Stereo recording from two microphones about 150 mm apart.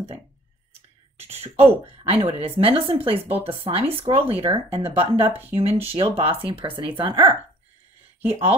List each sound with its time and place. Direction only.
1.1 s speech: 45° right (ahead or behind)